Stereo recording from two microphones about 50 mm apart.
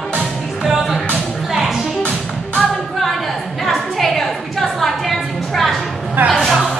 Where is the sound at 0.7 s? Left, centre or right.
Centre.